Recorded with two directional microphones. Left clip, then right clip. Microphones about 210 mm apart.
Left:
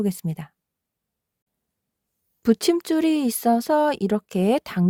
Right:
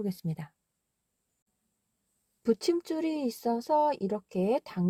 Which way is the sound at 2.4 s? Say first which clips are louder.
Left 7 dB; 40° left (ahead or behind).